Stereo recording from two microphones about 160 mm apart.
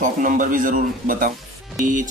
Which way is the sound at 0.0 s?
55° right (ahead or behind).